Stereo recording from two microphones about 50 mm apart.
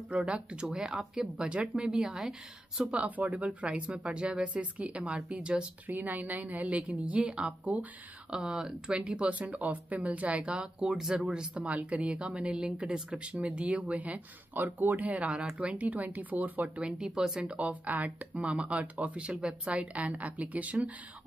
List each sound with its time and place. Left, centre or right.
0.2 s speech: centre
2.8 s a woman's voice: right
5.9 s a woman's voice: right; by 9.3 s centre
9.3 s speech: right; by 11.5 s centre
11.5 s a woman's voice: right
16.8 s speech: centre